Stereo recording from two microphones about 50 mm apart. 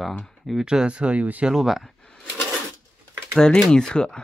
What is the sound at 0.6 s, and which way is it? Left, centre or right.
Speech, centre.